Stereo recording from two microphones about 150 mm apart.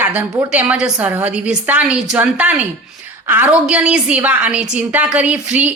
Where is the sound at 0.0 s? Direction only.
10° right (ahead or behind).